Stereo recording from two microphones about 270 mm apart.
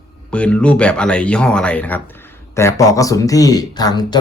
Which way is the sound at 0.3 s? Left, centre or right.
Centre.